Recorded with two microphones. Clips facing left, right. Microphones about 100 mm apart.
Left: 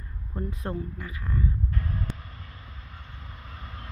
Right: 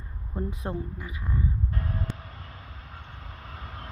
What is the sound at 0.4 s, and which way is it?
Speech, 20° right (ahead or behind).